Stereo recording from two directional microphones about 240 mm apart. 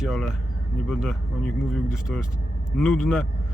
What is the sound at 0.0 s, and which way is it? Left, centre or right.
Speech, centre.